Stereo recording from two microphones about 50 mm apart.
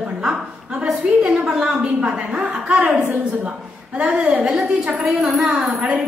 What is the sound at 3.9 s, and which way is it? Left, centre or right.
A woman's voice, centre.